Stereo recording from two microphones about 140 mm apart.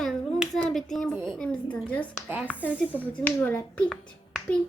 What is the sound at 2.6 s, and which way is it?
Speech, 10° right (ahead or behind).